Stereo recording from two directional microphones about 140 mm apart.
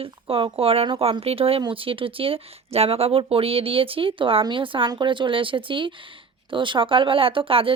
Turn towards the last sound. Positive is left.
turn(degrees=-40)  # may be behind; listen again after turning